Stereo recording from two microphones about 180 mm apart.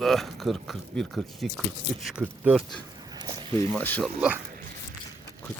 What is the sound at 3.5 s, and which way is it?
Speech, 15° left (ahead or behind).